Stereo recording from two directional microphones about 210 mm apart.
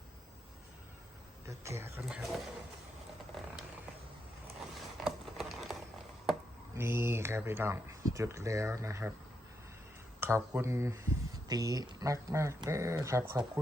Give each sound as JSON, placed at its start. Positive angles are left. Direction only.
{"t": 1.5, "sound": "speech", "side_deg": -15}
{"t": 3.3, "sound": "vehicle", "side_deg": -5}
{"t": 4.9, "sound": "a sound", "side_deg": 0}
{"t": 6.7, "sound": "speech", "side_deg": -10}
{"t": 10.2, "sound": "speech", "side_deg": -10}